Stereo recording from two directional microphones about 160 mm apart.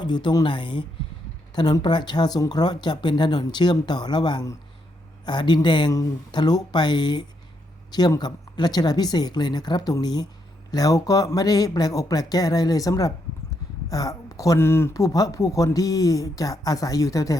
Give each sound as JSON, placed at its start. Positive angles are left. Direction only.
{"t": 0.0, "sound": "speech", "side_deg": 30}